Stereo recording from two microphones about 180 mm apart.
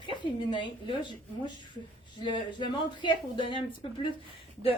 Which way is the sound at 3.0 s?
25° left (ahead or behind).